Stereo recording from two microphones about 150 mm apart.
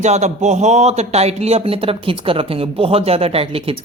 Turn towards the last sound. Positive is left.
turn(degrees=-40)  # may be behind; listen again after turning